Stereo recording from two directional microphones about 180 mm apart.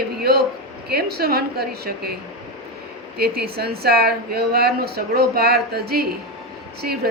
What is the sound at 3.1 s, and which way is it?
Speech, 60° right (ahead or behind).